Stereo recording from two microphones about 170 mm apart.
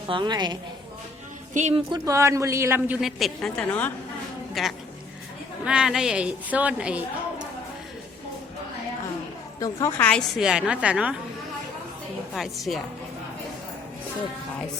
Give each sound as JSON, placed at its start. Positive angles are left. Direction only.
{"t": 0.1, "sound": "a woman's voice", "side_deg": -25}
{"t": 1.5, "sound": "a woman's voice", "side_deg": -40}
{"t": 1.9, "sound": "a woman's voice", "side_deg": -20}
{"t": 9.6, "sound": "a woman's voice", "side_deg": 20}
{"t": 10.0, "sound": "a woman's voice", "side_deg": 5}
{"t": 12.3, "sound": "a woman's voice", "side_deg": 0}